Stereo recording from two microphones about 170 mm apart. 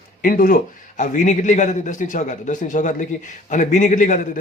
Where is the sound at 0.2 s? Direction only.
55° left (ahead or behind).